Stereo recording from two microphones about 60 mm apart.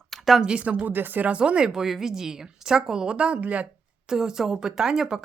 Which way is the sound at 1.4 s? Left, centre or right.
Centre.